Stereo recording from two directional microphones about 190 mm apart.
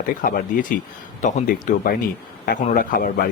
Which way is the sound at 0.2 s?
45° left (ahead or behind).